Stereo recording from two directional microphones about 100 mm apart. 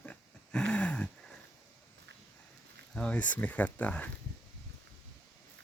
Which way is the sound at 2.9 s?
10° left (ahead or behind).